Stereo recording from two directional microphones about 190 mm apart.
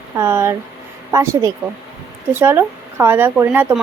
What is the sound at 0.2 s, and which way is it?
A woman's voice, 10° right (ahead or behind).